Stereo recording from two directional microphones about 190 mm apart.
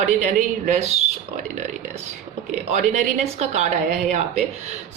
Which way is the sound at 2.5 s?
35° right (ahead or behind).